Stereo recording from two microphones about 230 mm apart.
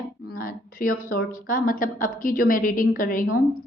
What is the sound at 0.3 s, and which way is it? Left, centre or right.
A woman's voice, left.